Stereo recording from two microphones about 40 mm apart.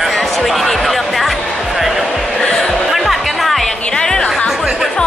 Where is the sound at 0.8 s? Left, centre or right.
Centre.